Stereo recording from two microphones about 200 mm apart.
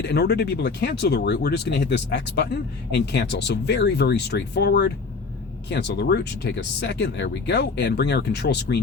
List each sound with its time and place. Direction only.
0.0 s speech: 55° left (ahead or behind)